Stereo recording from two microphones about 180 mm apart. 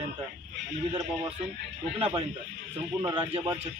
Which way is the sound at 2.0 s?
30° right (ahead or behind).